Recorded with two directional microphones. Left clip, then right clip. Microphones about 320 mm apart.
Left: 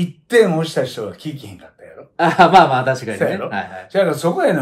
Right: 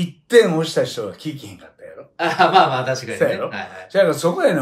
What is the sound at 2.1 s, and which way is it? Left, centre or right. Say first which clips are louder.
Speech: left 4 dB; centre.